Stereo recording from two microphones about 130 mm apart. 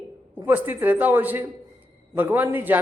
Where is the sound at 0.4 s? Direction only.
15° right (ahead or behind).